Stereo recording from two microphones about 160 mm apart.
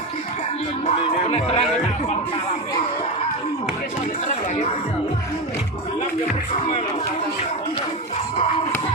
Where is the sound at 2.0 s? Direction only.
40° left (ahead or behind).